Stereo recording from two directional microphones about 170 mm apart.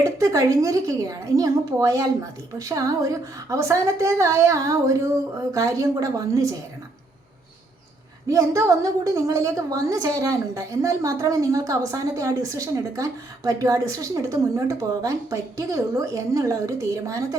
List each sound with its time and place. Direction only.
0.0 s a woman's voice: 20° right (ahead or behind)
8.3 s a woman's voice: 20° right (ahead or behind)